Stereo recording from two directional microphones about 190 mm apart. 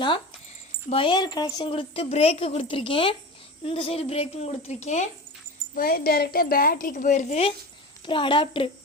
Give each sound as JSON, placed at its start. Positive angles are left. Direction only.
{"t": 0.9, "sound": "a woman's voice", "side_deg": 30}
{"t": 5.7, "sound": "a woman's voice", "side_deg": 50}
{"t": 8.0, "sound": "a woman's voice", "side_deg": 25}